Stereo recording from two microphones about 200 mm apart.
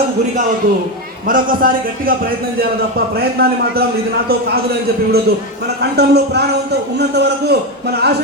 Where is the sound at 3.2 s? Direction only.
50° right (ahead or behind).